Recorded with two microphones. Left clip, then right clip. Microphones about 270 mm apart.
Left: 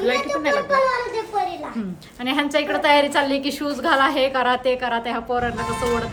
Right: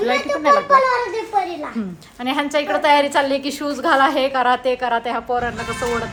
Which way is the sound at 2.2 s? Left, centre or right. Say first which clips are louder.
Right 1 dB; centre.